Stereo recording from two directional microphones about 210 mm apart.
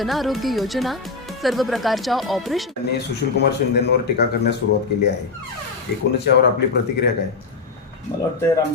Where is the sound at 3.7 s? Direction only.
50° left (ahead or behind).